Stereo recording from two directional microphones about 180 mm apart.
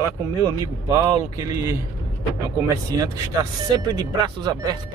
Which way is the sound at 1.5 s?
15° right (ahead or behind).